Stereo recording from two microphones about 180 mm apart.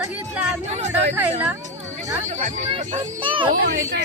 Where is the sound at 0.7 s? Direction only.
35° right (ahead or behind).